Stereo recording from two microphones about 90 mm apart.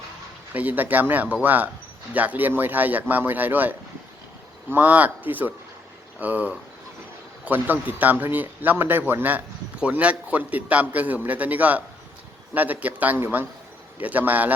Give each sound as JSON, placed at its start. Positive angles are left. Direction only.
{"t": 0.5, "sound": "a man's voice", "side_deg": -20}